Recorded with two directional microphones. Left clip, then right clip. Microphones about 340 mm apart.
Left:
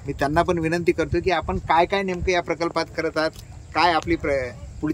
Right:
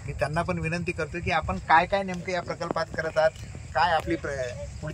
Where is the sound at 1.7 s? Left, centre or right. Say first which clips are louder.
Left 2 dB; left.